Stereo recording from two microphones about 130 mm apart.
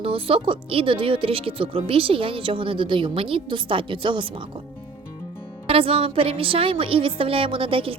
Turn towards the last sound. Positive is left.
turn(degrees=-45)  # may be behind; listen again after turning